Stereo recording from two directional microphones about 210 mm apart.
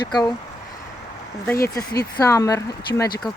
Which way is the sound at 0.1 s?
20° left (ahead or behind).